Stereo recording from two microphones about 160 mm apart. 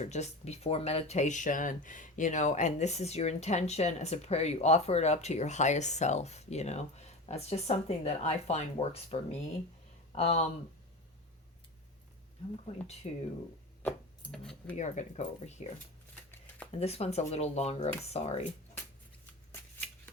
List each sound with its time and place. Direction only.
0.0 s speech: 45° left (ahead or behind)
13.0 s speech: 40° left (ahead or behind)
13.8 s speech: 5° left (ahead or behind)
14.8 s speech: 45° left (ahead or behind)
16.7 s speech: 40° left (ahead or behind)